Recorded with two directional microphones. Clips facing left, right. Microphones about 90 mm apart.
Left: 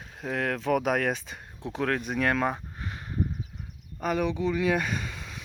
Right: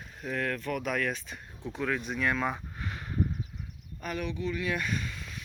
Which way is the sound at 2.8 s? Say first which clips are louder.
Even; 25° left (ahead or behind).